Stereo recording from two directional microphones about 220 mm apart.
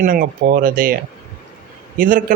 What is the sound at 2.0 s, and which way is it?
Speech, 40° right (ahead or behind).